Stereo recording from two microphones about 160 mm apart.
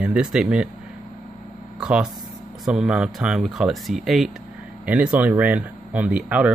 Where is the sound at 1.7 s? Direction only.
5° right (ahead or behind).